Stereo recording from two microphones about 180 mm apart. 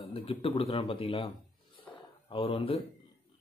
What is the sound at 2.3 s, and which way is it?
Speech, 30° left (ahead or behind).